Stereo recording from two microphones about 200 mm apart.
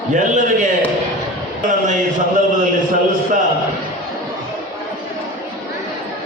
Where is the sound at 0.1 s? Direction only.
40° right (ahead or behind).